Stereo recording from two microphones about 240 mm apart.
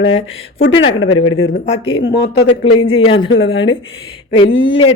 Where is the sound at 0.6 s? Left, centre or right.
Left.